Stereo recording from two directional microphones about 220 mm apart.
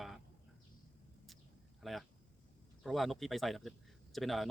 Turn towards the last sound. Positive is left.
turn(degrees=0)  # may be behind; listen again after turning